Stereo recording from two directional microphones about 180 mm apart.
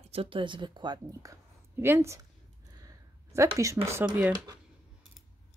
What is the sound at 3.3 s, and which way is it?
Speech, 15° right (ahead or behind).